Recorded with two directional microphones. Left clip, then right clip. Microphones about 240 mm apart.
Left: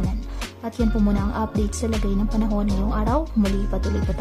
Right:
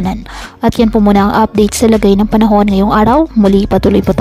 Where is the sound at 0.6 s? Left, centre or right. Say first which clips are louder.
Right 15 dB; right.